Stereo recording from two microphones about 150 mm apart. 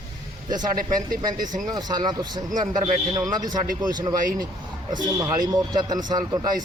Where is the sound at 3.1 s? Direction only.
25° right (ahead or behind).